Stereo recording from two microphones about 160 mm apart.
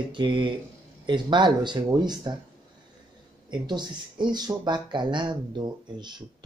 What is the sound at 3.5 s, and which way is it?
Speech, 30° right (ahead or behind).